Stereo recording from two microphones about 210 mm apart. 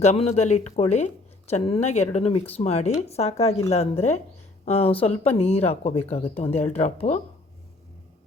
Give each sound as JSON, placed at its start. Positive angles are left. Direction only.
{"t": 0.0, "sound": "speech", "side_deg": 30}